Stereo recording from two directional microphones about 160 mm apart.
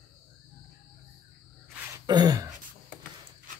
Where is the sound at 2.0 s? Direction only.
25° right (ahead or behind).